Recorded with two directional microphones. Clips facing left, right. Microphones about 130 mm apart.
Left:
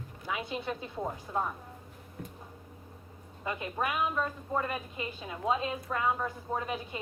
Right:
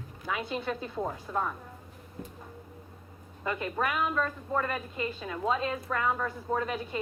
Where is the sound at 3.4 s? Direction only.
15° left (ahead or behind).